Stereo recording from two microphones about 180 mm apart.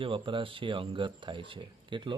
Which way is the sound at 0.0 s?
30° right (ahead or behind).